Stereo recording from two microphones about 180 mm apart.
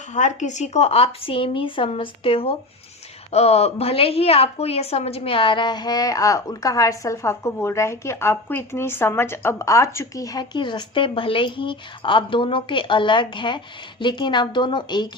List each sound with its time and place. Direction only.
0.1 s a woman's voice: 40° left (ahead or behind); by 15.1 s 25° left (ahead or behind)